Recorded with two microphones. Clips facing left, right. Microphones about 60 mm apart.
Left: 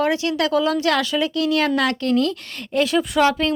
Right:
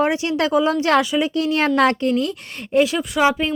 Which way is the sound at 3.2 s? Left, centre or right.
Centre.